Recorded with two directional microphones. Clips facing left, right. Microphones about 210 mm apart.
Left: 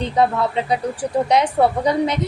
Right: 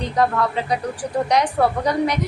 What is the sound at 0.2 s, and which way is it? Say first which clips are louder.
A woman's voice: left 1 dB; 25° left (ahead or behind).